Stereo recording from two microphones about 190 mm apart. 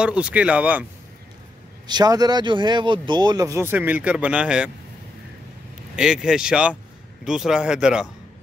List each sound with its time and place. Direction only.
0.0 s speech: 5° right (ahead or behind)
1.9 s speech: 20° right (ahead or behind); by 4.6 s 5° right (ahead or behind)
5.9 s speech: 5° right (ahead or behind)